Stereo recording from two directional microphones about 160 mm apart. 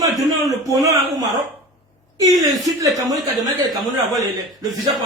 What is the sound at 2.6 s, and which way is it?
Speech, 20° right (ahead or behind).